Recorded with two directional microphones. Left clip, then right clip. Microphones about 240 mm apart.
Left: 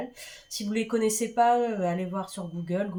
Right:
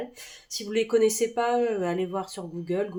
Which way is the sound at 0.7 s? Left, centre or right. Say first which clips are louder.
Right 5 dB; right.